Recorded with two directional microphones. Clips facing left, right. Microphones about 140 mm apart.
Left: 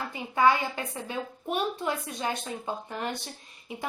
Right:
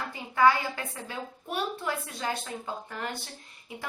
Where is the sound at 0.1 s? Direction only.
20° left (ahead or behind).